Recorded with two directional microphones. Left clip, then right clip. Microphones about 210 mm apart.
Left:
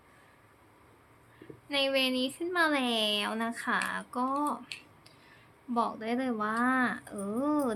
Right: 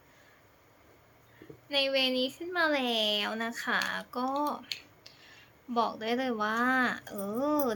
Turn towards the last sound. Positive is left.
turn(degrees=5)  # may be behind; listen again after turning